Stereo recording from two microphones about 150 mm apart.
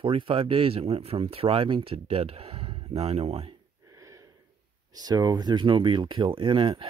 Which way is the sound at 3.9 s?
20° right (ahead or behind).